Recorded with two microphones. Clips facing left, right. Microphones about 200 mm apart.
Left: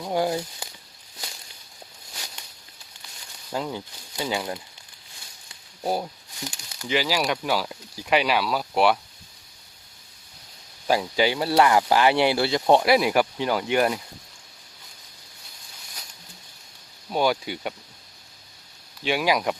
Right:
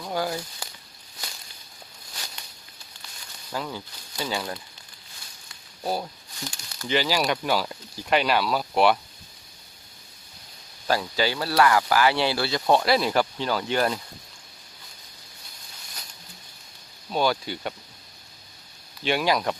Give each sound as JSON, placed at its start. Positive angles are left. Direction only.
{"t": 0.0, "sound": "speech", "side_deg": 20}
{"t": 3.5, "sound": "speech", "side_deg": 20}
{"t": 5.8, "sound": "speech", "side_deg": 15}
{"t": 6.8, "sound": "speech", "side_deg": 5}
{"t": 10.8, "sound": "speech", "side_deg": 15}
{"t": 17.1, "sound": "speech", "side_deg": 15}
{"t": 19.0, "sound": "speech", "side_deg": 5}